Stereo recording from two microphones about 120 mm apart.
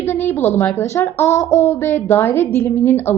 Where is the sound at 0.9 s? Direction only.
20° left (ahead or behind).